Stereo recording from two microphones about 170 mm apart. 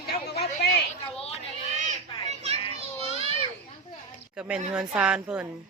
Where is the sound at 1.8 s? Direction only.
40° right (ahead or behind).